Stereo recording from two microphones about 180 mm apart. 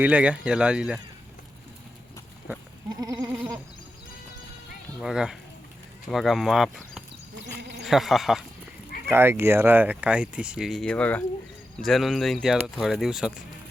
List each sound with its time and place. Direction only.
0.0 s speech: 5° right (ahead or behind)
2.9 s goat: 20° right (ahead or behind)
3.2 s goat: 10° right (ahead or behind)
4.9 s speech: 5° right (ahead or behind)
7.4 s sheep: 70° right (ahead or behind)
7.9 s speech: centre (ahead or behind)
9.0 s speech: 15° right (ahead or behind)